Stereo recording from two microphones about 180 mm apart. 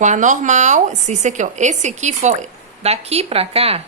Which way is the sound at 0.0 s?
45° right (ahead or behind).